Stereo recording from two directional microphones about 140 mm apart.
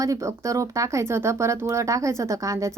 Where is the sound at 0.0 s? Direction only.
25° right (ahead or behind).